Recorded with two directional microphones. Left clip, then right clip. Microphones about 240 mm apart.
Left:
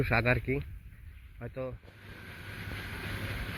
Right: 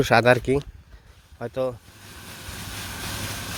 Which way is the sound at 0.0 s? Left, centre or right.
Right.